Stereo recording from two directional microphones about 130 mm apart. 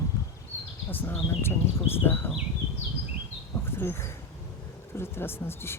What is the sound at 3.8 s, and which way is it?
Speech, 20° left (ahead or behind).